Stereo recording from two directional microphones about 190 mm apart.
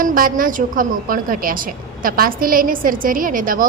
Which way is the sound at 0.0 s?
45° right (ahead or behind).